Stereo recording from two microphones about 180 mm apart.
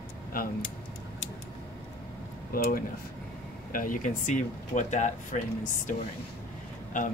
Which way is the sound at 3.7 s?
50° left (ahead or behind).